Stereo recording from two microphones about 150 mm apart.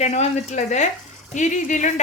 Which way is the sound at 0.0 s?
50° left (ahead or behind).